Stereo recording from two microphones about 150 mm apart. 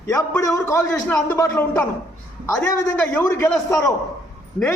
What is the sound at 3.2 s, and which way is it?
Speech, 15° left (ahead or behind).